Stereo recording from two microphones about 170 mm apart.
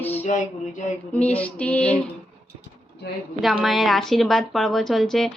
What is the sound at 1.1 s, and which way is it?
Speech, 10° left (ahead or behind).